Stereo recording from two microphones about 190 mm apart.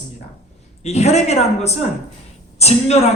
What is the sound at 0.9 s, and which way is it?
A man's voice, 35° left (ahead or behind).